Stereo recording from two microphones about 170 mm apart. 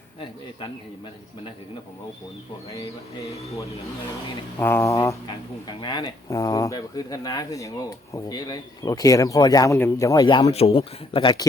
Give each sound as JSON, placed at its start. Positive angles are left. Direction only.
{"t": 0.2, "sound": "a man's voice", "side_deg": 30}
{"t": 4.6, "sound": "a sound", "side_deg": 15}
{"t": 5.2, "sound": "speech", "side_deg": 25}